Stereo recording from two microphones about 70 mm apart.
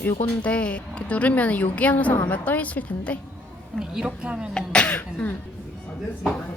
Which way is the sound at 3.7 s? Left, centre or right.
Centre.